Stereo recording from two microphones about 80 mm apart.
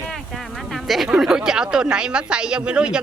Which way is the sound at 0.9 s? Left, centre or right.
Centre.